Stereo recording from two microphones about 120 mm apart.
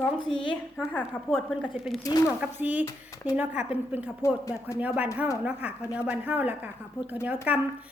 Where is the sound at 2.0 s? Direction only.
35° left (ahead or behind).